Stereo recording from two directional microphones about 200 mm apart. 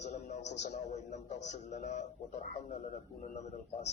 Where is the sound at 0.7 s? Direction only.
35° left (ahead or behind).